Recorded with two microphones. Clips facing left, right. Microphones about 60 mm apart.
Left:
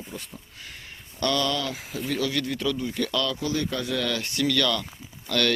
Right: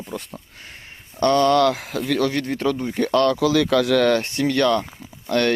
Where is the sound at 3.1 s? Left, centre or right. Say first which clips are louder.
Right 12 dB; right.